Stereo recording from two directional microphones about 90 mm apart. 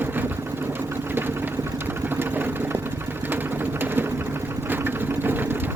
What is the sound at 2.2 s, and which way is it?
Vehicle, 25° right (ahead or behind).